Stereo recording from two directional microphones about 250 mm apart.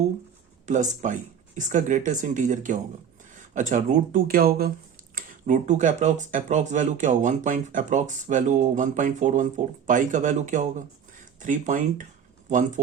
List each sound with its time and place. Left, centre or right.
0.6 s speech: right